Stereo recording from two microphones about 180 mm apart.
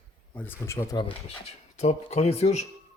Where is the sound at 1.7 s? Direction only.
40° left (ahead or behind).